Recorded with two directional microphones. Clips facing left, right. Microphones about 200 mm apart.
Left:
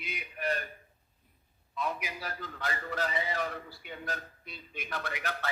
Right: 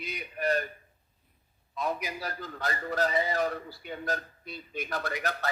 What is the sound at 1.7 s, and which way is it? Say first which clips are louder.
A man's voice: right 3 dB; 40° right (ahead or behind).